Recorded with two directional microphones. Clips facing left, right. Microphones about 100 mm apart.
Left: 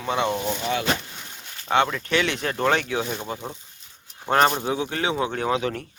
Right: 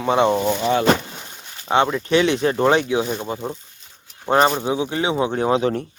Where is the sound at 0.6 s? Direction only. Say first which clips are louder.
Right 9 dB; 40° right (ahead or behind).